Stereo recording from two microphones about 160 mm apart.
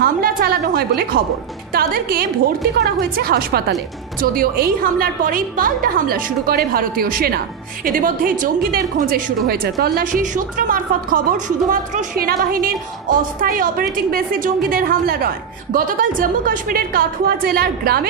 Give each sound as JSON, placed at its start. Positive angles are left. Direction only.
{"t": 0.0, "sound": "a sound", "side_deg": -70}
{"t": 1.7, "sound": "a woman's voice", "side_deg": -65}
{"t": 2.8, "sound": "a woman's voice", "side_deg": -80}
{"t": 4.2, "sound": "a woman's voice", "side_deg": -65}